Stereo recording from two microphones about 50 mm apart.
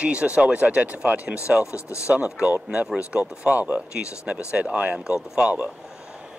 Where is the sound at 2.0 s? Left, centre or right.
Right.